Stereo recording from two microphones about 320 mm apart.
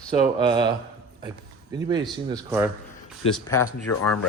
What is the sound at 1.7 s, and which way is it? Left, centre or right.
Speech, centre.